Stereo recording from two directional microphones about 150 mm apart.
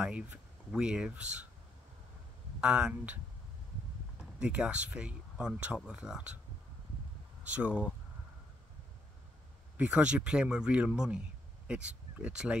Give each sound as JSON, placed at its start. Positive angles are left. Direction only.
{"t": 0.0, "sound": "speech", "side_deg": -5}
{"t": 2.6, "sound": "speech", "side_deg": -5}
{"t": 4.2, "sound": "speech", "side_deg": -5}
{"t": 7.4, "sound": "speech", "side_deg": -10}
{"t": 9.8, "sound": "speech", "side_deg": -10}